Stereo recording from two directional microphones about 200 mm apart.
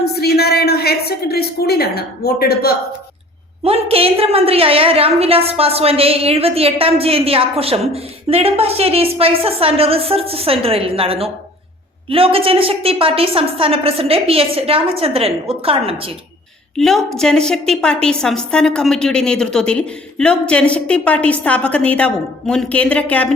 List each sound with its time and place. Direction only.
0.0 s speech: 55° left (ahead or behind)
3.6 s a woman's voice: 30° right (ahead or behind)
16.7 s a woman's voice: centre (ahead or behind)